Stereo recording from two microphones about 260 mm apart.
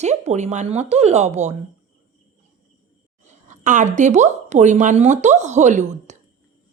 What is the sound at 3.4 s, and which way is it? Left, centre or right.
A woman's voice, right.